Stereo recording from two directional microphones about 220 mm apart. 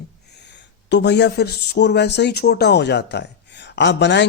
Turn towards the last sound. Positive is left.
turn(degrees=55)  # may be behind; listen again after turning